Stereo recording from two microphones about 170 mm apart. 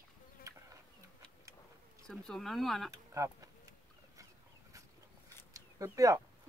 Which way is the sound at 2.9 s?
20° right (ahead or behind).